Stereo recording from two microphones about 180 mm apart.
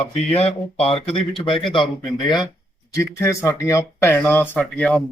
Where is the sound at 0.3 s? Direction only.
35° left (ahead or behind).